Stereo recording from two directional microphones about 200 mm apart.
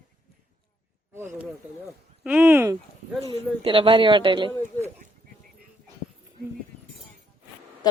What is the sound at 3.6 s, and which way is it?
Speech, 25° right (ahead or behind).